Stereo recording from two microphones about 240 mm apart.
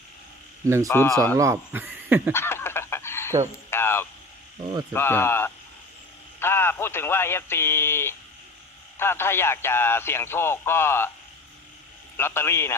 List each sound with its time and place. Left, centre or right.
0.6 s speech: centre
0.9 s a man's voice: centre
1.4 s speech: centre
2.3 s fowl: centre
3.7 s a sound: centre
4.9 s a man's voice: centre
12.1 s a man's voice: centre